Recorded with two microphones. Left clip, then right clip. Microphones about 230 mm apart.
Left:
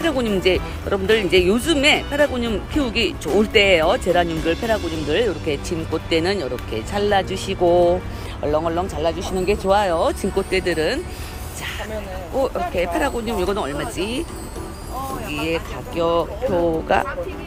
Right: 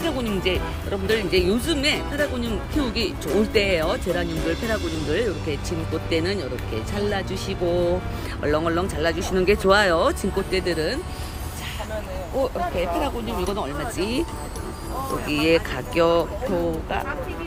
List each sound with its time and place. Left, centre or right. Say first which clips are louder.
0.0 s speech: left 5 dB; centre
4.5 s speech: left 4 dB; centre
5.5 s speech: left 4 dB; centre
8.4 s speech: left 2 dB; centre
12.4 s speech: left 3 dB; centre
15.3 s speech: right 6 dB; centre
16.9 s speech: left 12 dB; left